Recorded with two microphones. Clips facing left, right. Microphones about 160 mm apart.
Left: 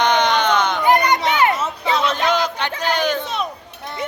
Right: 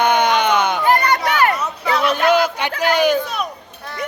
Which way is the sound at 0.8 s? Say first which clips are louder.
Even; 20° left (ahead or behind).